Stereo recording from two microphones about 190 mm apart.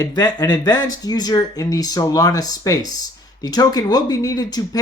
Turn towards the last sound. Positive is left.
turn(degrees=20)  # may be behind; listen again after turning